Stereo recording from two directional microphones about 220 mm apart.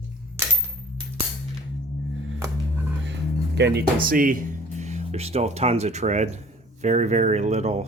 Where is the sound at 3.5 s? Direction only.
50° right (ahead or behind).